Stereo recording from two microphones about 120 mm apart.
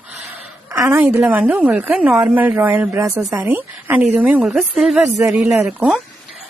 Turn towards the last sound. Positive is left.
turn(degrees=-10)  # may be behind; listen again after turning